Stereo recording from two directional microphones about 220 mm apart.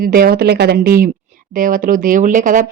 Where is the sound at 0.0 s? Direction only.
40° right (ahead or behind).